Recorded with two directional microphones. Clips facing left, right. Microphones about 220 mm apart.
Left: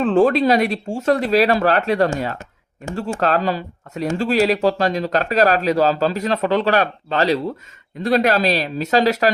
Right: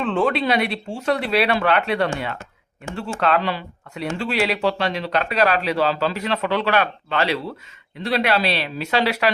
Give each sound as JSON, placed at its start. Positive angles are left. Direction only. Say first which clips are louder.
{"t": 0.0, "sound": "speech", "louder": "left 6 dB", "side_deg": 45}